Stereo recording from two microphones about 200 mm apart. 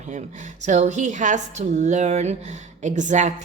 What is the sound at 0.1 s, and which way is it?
A woman's voice, 35° right (ahead or behind).